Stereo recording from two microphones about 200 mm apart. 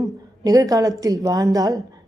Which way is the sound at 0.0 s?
15° right (ahead or behind).